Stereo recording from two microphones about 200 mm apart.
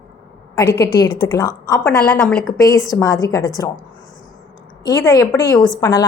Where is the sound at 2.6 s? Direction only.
15° left (ahead or behind).